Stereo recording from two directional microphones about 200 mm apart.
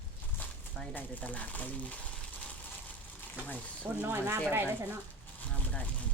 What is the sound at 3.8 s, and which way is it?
Speech, 10° right (ahead or behind).